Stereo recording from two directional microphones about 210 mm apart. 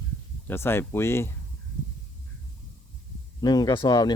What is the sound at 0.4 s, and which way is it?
Speech, 10° left (ahead or behind).